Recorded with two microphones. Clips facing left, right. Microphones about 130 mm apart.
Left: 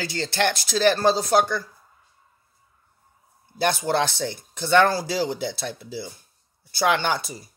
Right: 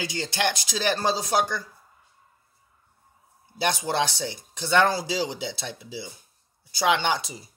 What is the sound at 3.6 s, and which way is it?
Speech, 55° left (ahead or behind).